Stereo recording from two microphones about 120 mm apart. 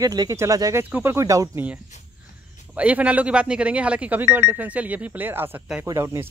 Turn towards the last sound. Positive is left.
turn(degrees=-20)  # may be behind; listen again after turning